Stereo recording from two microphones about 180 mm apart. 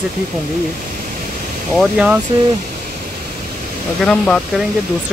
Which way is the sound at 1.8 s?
5° right (ahead or behind).